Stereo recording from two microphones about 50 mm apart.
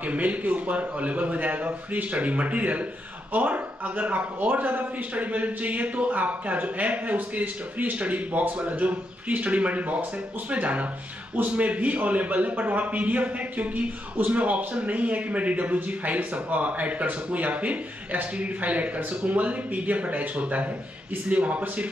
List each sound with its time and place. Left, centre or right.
0.0 s a man's voice: right